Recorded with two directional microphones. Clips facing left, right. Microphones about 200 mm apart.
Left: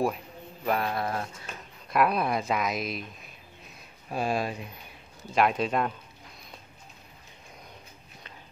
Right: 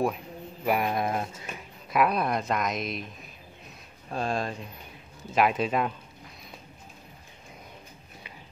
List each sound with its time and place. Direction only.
0.7 s speech: 15° right (ahead or behind)
1.9 s speech: centre (ahead or behind)
4.1 s speech: 10° left (ahead or behind)
5.3 s speech: 5° right (ahead or behind)